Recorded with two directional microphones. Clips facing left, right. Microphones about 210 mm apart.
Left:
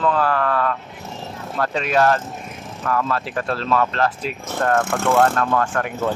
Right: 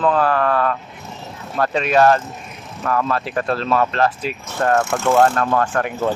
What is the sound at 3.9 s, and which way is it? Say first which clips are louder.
Speech: right 2 dB; 10° right (ahead or behind).